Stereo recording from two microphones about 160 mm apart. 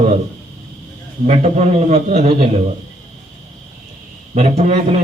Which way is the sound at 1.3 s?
45° right (ahead or behind).